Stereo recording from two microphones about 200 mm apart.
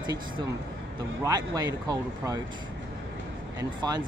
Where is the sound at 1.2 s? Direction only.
20° right (ahead or behind).